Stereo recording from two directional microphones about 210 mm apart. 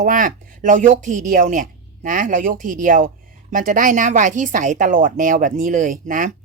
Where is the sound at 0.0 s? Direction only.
40° right (ahead or behind).